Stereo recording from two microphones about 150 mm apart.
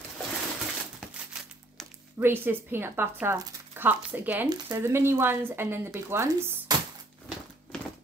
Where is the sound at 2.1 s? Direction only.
15° right (ahead or behind).